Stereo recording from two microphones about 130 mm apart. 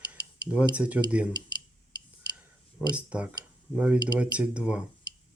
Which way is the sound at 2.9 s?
10° right (ahead or behind).